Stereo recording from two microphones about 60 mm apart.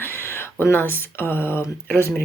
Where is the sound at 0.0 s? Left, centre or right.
Left.